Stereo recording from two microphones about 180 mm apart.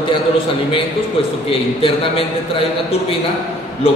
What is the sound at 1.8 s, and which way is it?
A man's voice, 30° left (ahead or behind).